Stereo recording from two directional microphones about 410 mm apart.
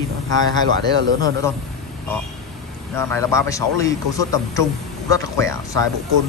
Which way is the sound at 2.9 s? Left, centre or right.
Centre.